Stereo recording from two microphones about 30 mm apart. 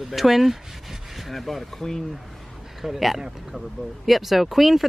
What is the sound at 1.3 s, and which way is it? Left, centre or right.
Speech, centre.